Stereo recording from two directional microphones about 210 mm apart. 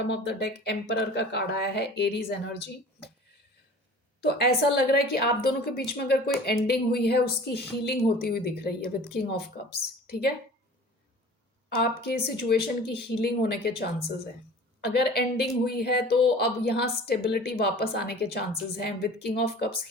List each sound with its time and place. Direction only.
0.1 s a woman's voice: 55° left (ahead or behind)
4.2 s a woman's voice: 50° left (ahead or behind)
11.8 s a woman's voice: 45° left (ahead or behind)